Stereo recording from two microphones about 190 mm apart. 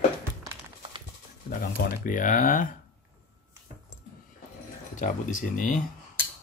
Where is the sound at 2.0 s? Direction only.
45° left (ahead or behind).